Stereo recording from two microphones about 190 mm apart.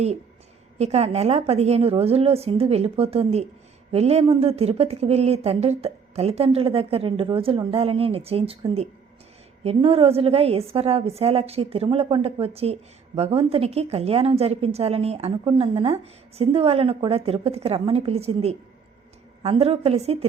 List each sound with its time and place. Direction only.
0.8 s a woman's voice: 35° right (ahead or behind)